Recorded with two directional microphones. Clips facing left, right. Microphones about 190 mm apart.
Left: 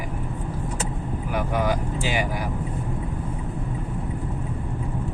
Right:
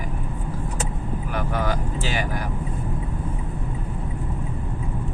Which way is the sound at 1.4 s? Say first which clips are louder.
Left 2 dB; 10° left (ahead or behind).